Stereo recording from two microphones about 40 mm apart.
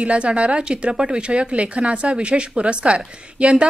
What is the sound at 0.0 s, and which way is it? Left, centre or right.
A woman's voice, right.